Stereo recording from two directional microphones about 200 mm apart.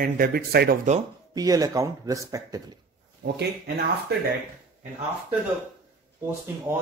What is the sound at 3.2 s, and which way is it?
Speech, 50° right (ahead or behind).